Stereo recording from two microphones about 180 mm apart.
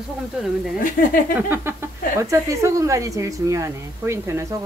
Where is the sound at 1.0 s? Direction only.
50° left (ahead or behind).